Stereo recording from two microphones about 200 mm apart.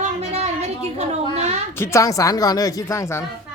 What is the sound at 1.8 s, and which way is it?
Speech, 15° left (ahead or behind).